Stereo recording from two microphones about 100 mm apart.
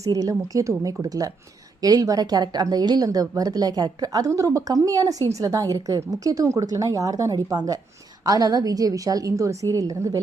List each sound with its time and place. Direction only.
0.0 s a woman's voice: 35° right (ahead or behind)